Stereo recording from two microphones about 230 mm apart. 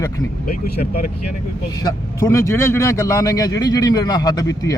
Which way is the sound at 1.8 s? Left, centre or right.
Centre.